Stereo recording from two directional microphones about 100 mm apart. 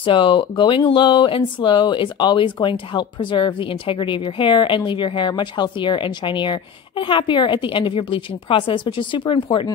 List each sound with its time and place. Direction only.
0.0 s speech: 55° left (ahead or behind)